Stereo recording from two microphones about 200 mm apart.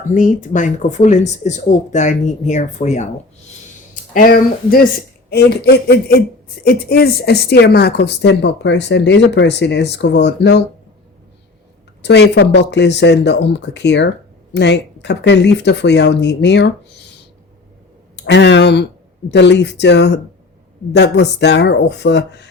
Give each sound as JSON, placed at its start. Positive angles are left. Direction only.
{"t": 0.0, "sound": "speech", "side_deg": 40}
{"t": 4.1, "sound": "a man's voice", "side_deg": 45}
{"t": 12.0, "sound": "speech", "side_deg": 60}
{"t": 18.2, "sound": "speech", "side_deg": 60}